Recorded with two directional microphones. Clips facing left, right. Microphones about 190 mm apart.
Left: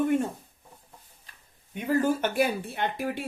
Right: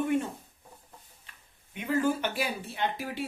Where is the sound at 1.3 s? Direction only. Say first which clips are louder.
Left 2 dB; 35° left (ahead or behind).